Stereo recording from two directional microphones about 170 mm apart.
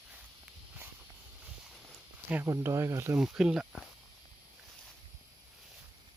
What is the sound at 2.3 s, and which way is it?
Speech, 15° right (ahead or behind).